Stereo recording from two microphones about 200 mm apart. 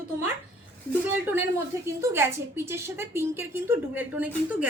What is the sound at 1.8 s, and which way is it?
A woman's voice, 10° right (ahead or behind).